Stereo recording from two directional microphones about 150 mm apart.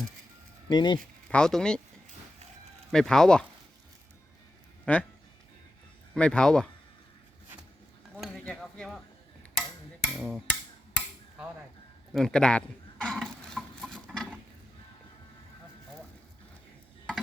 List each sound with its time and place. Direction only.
0.7 s speech: 30° left (ahead or behind)
1.3 s speech: 5° left (ahead or behind)
2.9 s speech: 5° left (ahead or behind)
4.9 s speech: 10° left (ahead or behind)
6.1 s speech: 5° left (ahead or behind)
8.1 s a sound: centre (ahead or behind)
12.1 s a sound: 5° left (ahead or behind)